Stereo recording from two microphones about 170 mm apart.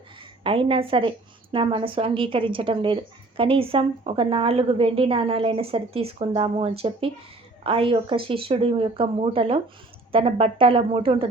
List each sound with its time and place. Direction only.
0.4 s speech: 30° right (ahead or behind)